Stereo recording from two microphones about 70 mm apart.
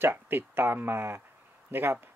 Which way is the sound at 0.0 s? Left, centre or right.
Right.